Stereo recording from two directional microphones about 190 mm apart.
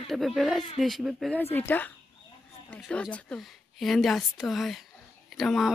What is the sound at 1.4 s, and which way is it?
A woman's voice, 10° left (ahead or behind).